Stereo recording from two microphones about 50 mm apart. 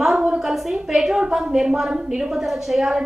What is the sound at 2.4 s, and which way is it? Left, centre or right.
Speech, centre.